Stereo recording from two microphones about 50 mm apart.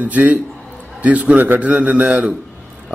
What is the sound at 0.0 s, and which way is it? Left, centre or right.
A man's voice, right.